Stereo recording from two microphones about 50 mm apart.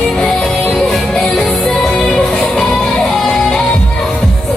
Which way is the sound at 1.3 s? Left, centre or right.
Centre.